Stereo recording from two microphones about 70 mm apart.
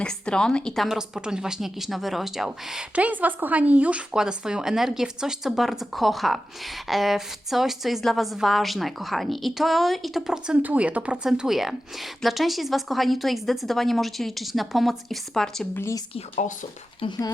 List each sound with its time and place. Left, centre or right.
0.0 s a woman's voice: centre
0.9 s a woman's voice: centre
2.9 s a woman's voice: right
11.3 s a woman's voice: centre
15.7 s speech: left
17.1 s speech: left